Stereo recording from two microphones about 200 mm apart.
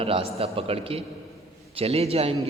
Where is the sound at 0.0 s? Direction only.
30° right (ahead or behind).